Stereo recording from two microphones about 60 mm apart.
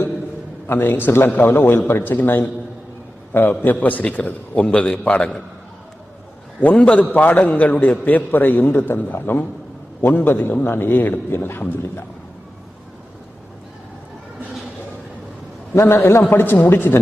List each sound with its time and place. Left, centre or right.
0.7 s a man's voice: left; by 5.3 s centre
6.6 s a man's voice: left
15.7 s a man's voice: left